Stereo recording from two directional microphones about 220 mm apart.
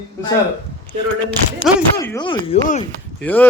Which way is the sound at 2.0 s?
15° left (ahead or behind).